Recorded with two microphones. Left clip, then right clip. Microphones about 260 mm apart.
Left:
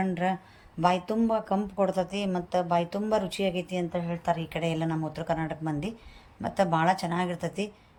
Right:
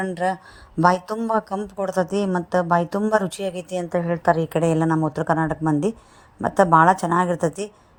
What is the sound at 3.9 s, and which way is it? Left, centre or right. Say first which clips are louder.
Speech: right 12 dB; right.